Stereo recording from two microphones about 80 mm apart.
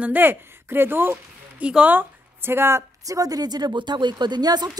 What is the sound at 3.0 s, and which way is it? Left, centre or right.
A woman's voice, right.